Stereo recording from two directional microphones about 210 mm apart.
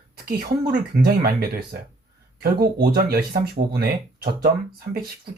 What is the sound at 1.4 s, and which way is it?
Speech, 50° right (ahead or behind).